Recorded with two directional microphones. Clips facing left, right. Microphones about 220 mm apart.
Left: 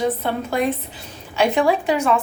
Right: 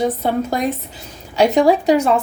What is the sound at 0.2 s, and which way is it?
Speech, 40° right (ahead or behind).